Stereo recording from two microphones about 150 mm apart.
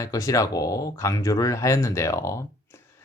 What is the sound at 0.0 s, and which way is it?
Speech, 20° left (ahead or behind).